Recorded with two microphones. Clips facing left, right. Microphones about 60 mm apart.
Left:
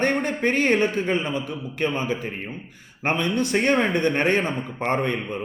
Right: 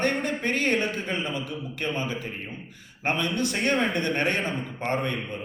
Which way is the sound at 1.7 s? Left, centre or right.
Left.